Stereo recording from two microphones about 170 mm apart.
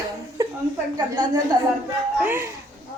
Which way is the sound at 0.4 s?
20° right (ahead or behind).